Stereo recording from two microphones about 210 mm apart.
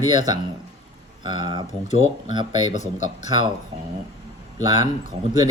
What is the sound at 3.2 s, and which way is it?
Speech, 20° right (ahead or behind).